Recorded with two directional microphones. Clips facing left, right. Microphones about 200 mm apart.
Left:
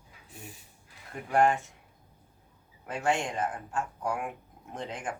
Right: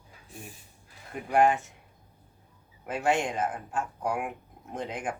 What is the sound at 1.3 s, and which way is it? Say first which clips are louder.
Speech: right 2 dB; 15° right (ahead or behind).